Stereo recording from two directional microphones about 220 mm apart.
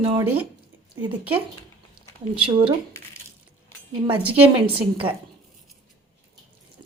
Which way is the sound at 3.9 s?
20° right (ahead or behind).